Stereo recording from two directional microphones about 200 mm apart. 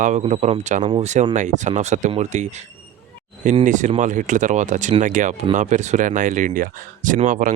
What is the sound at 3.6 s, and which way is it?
Speech, 40° right (ahead or behind).